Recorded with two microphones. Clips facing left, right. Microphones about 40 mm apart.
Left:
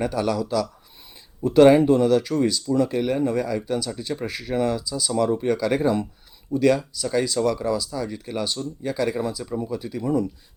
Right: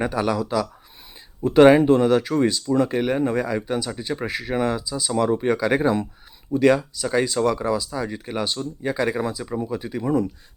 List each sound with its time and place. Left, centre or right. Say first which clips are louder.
0.0 s speech: right 1 dB; right
1.5 s speech: right 1 dB; right